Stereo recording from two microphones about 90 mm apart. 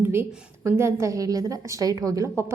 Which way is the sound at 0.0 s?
25° right (ahead or behind).